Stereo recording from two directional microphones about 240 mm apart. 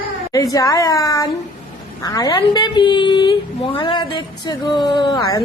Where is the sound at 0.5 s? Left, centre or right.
Centre.